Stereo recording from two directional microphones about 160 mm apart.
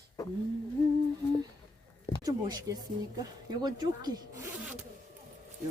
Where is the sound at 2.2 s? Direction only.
25° right (ahead or behind).